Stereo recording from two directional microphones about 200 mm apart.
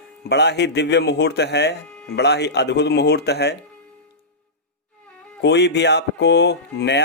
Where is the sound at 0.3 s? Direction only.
55° left (ahead or behind).